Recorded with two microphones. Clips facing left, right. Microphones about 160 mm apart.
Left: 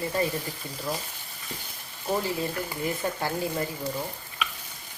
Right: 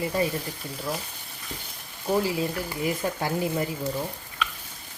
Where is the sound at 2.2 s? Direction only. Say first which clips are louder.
Right 2 dB; 5° right (ahead or behind).